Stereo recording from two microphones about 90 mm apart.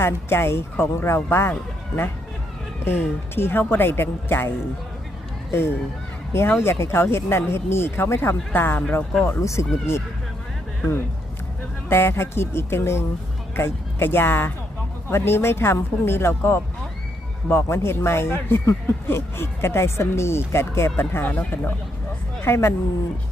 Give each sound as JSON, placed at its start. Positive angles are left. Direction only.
{"t": 0.0, "sound": "speech", "side_deg": 25}
{"t": 2.8, "sound": "speech", "side_deg": 25}
{"t": 11.9, "sound": "speech", "side_deg": 25}